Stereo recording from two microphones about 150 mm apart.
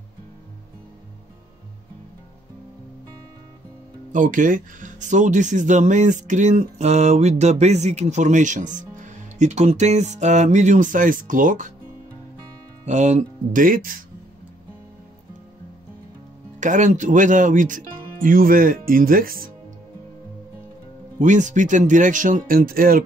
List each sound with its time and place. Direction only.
4.1 s speech: 60° right (ahead or behind)
12.8 s speech: 50° right (ahead or behind); by 13.9 s 65° right (ahead or behind)
16.5 s speech: 55° right (ahead or behind); by 19.5 s 70° right (ahead or behind)
21.2 s speech: 55° right (ahead or behind); by 23.0 s 70° right (ahead or behind)